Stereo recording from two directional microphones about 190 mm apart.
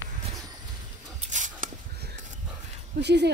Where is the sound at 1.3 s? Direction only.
40° right (ahead or behind).